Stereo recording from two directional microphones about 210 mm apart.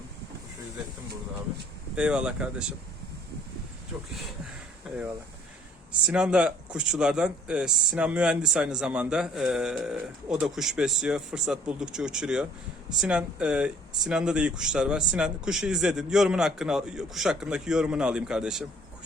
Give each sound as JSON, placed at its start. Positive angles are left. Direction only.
{"t": 2.0, "sound": "speech", "side_deg": -5}
{"t": 3.9, "sound": "speech", "side_deg": -5}
{"t": 6.1, "sound": "speech", "side_deg": -5}